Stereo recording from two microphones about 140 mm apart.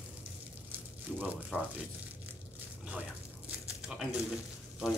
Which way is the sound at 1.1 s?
10° right (ahead or behind).